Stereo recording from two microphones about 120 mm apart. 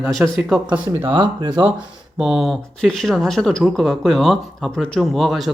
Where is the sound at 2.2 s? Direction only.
5° right (ahead or behind).